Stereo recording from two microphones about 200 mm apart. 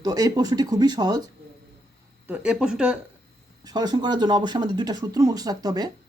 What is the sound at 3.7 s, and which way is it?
Speech, 20° right (ahead or behind).